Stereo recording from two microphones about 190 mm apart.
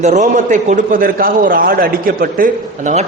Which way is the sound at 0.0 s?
40° right (ahead or behind).